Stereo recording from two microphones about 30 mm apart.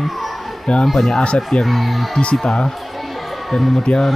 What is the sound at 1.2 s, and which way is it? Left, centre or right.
Speech, left.